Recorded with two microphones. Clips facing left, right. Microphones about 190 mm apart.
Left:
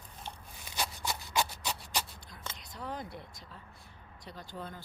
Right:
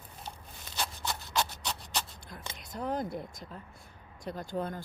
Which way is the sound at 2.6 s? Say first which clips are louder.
Right 8 dB; 45° right (ahead or behind).